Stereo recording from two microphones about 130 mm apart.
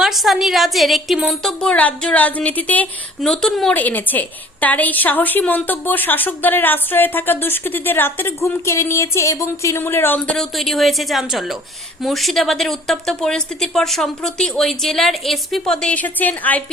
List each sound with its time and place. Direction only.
0.0 s a woman's voice: centre (ahead or behind); by 10.3 s 15° left (ahead or behind)
10.3 s a woman's voice: centre (ahead or behind)